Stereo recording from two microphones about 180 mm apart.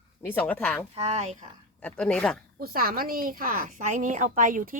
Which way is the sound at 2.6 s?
55° right (ahead or behind).